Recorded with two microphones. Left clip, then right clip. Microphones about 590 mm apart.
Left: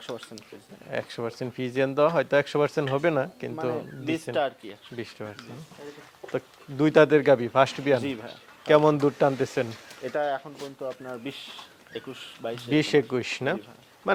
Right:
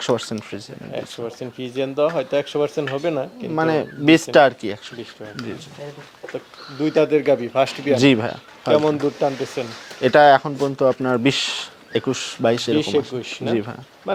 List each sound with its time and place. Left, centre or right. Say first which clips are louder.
0.9 s speech: right 2 dB; left
3.5 s speech: right 11 dB; right
6.3 s speech: left 1 dB; left
8.0 s speech: right 17 dB; right
8.6 s speech: right 2 dB; left
10.0 s speech: right 16 dB; right
12.7 s speech: right 3 dB; left